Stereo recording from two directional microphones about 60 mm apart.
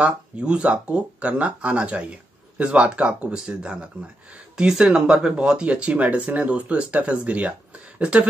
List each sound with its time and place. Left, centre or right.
0.0 s speech: centre